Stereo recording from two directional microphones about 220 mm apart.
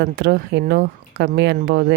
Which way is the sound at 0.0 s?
50° right (ahead or behind).